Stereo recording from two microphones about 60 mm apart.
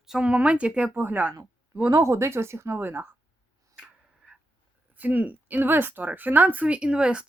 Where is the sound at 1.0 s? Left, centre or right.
Right.